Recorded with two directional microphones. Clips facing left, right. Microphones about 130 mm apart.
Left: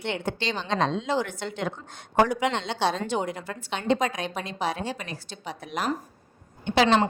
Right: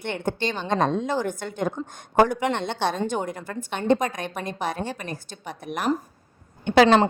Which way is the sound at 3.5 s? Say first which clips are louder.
Right 3 dB; 45° right (ahead or behind).